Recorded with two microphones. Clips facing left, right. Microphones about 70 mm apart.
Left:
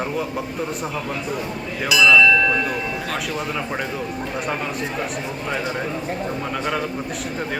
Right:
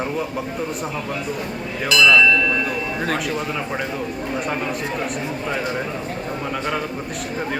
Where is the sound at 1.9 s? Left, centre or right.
Centre.